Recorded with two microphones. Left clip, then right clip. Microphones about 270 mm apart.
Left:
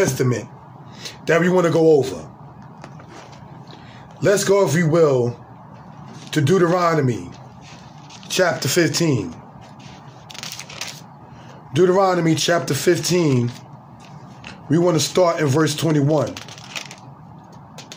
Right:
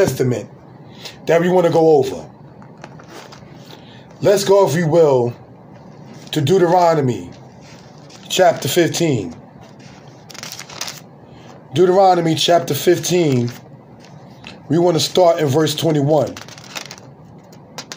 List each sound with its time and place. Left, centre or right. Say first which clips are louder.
0.0 s a man's voice: right 3 dB; centre
4.2 s a man's voice: right 4 dB; centre
6.3 s a man's voice: right 4 dB; centre
8.3 s a man's voice: right 5 dB; centre
10.3 s a sound: right 1 dB; centre
11.7 s a man's voice: right 4 dB; centre
14.7 s a man's voice: right 3 dB; centre
16.3 s crumpling: right 1 dB; centre